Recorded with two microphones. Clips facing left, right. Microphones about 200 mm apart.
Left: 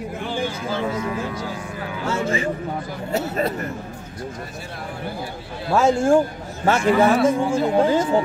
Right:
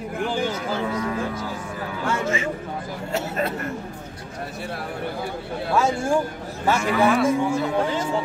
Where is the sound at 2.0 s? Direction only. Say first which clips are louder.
Left 2 dB; 30° left (ahead or behind).